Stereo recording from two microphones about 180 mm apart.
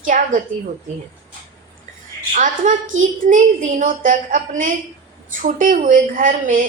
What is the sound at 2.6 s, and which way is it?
Speech, 45° right (ahead or behind).